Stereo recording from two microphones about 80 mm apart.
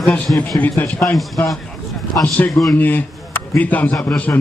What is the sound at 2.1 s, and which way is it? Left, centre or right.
A man's voice, left.